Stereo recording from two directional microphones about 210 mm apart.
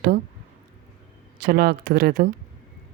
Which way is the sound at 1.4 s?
45° right (ahead or behind).